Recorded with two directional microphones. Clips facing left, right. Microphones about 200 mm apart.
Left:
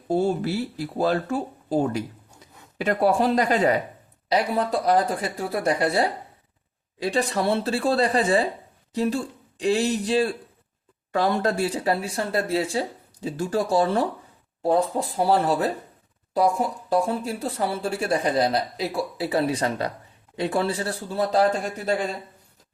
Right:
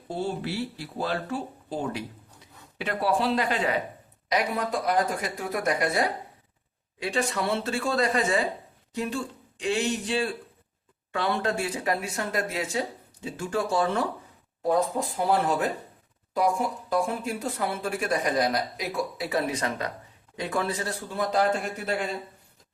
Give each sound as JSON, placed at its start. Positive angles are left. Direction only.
{"t": 0.1, "sound": "speech", "side_deg": 45}
{"t": 4.3, "sound": "speech", "side_deg": 30}